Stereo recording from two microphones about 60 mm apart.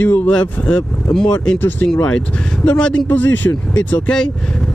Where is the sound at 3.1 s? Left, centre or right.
Left.